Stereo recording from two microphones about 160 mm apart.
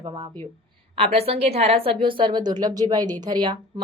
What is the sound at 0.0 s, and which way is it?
Speech, 25° right (ahead or behind).